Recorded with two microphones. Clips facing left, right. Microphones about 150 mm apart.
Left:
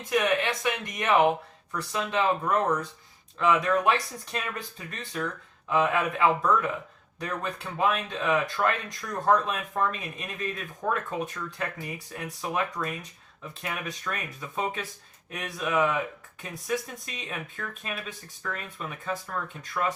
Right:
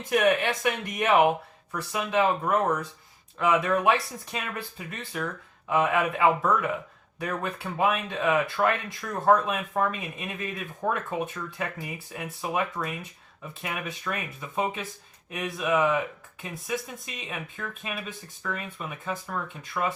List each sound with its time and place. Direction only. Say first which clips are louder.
0.9 s speech: right 1 dB; 10° right (ahead or behind)